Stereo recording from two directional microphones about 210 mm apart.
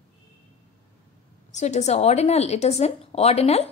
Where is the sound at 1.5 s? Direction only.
35° left (ahead or behind).